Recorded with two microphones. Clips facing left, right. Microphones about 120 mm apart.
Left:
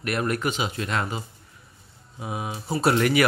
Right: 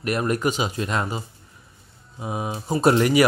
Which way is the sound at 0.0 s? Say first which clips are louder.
Right 3 dB; 30° right (ahead or behind).